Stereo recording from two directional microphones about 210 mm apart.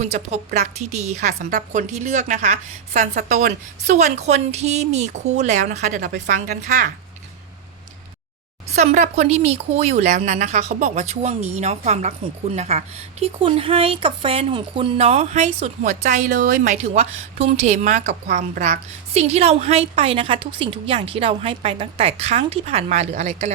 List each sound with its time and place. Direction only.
0.0 s speech: 30° right (ahead or behind)
8.7 s speech: 30° right (ahead or behind)